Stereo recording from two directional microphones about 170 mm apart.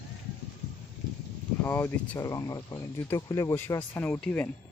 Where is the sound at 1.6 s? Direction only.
10° left (ahead or behind).